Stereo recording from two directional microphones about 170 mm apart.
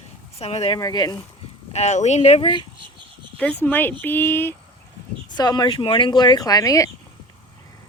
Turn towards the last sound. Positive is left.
turn(degrees=20)  # may be behind; listen again after turning